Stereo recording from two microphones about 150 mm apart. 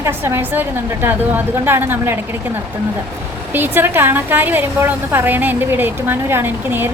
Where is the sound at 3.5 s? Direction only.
15° right (ahead or behind).